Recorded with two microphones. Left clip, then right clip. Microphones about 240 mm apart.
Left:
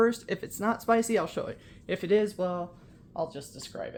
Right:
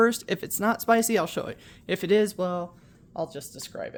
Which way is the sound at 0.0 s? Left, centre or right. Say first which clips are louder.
Right 3 dB; right.